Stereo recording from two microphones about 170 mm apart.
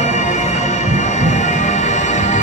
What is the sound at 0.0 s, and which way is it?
Music, 45° left (ahead or behind).